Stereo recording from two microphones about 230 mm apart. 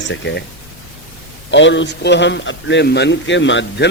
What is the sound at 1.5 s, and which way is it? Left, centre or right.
A man's voice, left.